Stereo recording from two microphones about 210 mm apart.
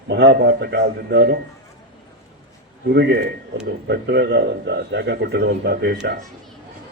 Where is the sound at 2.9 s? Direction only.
50° right (ahead or behind).